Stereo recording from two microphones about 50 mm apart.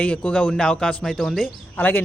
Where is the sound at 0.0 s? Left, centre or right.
Left.